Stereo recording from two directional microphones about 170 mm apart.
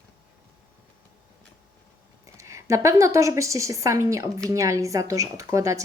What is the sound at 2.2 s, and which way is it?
A woman's voice, 20° right (ahead or behind).